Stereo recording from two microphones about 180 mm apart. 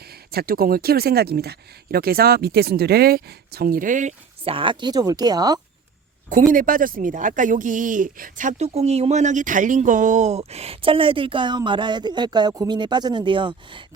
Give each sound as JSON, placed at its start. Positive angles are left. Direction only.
{"t": 0.0, "sound": "speech", "side_deg": -60}
{"t": 4.4, "sound": "speech", "side_deg": -30}
{"t": 6.2, "sound": "speech", "side_deg": -45}